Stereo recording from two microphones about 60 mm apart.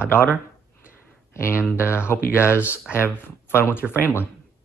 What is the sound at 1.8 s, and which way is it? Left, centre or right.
Speech, left.